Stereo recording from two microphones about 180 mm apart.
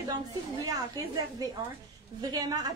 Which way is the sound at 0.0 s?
20° right (ahead or behind).